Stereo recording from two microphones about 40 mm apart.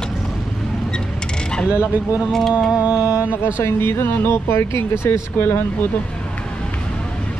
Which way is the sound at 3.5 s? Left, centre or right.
Left.